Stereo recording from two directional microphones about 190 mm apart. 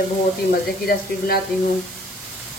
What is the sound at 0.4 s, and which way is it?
Speech, 55° left (ahead or behind).